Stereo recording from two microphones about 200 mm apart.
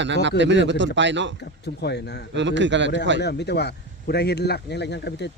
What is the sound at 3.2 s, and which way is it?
Speech, 55° left (ahead or behind).